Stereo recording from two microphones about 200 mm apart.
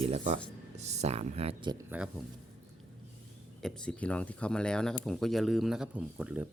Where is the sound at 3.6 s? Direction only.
5° left (ahead or behind).